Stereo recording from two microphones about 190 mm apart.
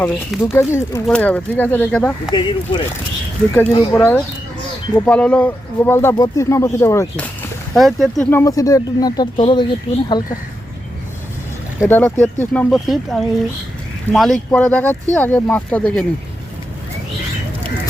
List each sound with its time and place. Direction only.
0.0 s speech: centre (ahead or behind)
0.5 s speech: 15° left (ahead or behind)
2.3 s speech: 25° left (ahead or behind)
7.7 s speech: centre (ahead or behind); by 10.3 s 20° left (ahead or behind)
11.9 s speech: 10° left (ahead or behind)